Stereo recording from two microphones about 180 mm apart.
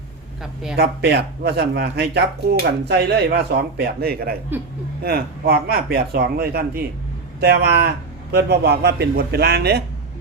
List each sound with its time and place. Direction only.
0.8 s speech: 65° right (ahead or behind)